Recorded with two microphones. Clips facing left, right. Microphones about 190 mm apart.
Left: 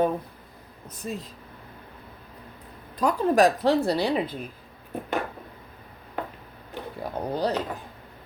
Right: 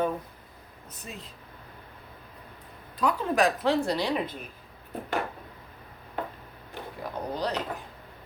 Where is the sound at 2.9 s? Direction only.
40° left (ahead or behind).